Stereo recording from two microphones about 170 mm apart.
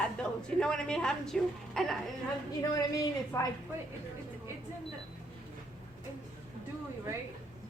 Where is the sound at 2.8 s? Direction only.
20° left (ahead or behind).